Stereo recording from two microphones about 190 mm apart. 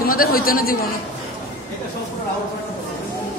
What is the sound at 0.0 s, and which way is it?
Speech, 50° left (ahead or behind).